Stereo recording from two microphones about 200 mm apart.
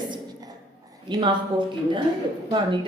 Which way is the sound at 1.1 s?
25° right (ahead or behind).